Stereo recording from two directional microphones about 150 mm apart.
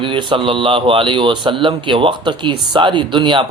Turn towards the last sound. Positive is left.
turn(degrees=-35)  # may be behind; listen again after turning